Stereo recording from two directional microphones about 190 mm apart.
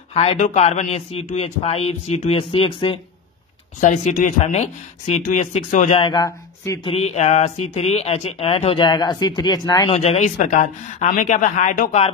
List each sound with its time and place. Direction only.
0.1 s speech: 30° left (ahead or behind)
3.8 s speech: 40° left (ahead or behind); by 6.9 s 15° left (ahead or behind)
6.9 s speech: 35° left (ahead or behind)
9.9 s speech: 35° left (ahead or behind)